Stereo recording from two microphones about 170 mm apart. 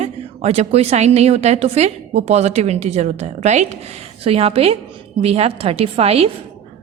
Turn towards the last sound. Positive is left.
turn(degrees=-35)  # may be behind; listen again after turning